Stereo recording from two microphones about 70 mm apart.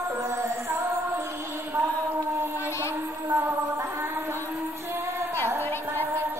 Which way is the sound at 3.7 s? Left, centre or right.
Right.